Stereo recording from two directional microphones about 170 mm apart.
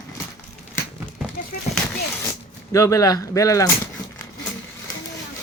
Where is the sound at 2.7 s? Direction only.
20° left (ahead or behind).